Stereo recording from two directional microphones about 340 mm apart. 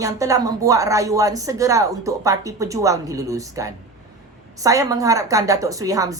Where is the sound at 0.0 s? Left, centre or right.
Centre.